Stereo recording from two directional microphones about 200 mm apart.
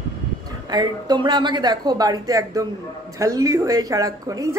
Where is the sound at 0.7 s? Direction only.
20° right (ahead or behind).